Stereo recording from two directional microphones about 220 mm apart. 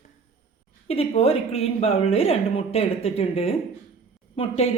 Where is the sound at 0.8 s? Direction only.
25° left (ahead or behind).